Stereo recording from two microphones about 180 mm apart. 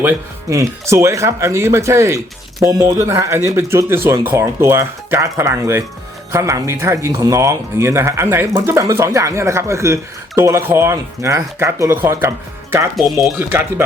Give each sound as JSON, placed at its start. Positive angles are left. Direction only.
{"t": 0.5, "sound": "speech", "side_deg": -15}
{"t": 13.0, "sound": "speech", "side_deg": 0}
{"t": 13.5, "sound": "speech", "side_deg": -10}